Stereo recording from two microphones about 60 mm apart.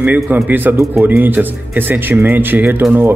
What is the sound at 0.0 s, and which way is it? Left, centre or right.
Speech, right.